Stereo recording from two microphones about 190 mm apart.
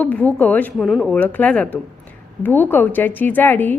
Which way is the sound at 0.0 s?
10° left (ahead or behind).